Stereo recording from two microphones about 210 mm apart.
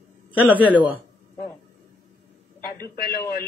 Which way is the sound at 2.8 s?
45° left (ahead or behind).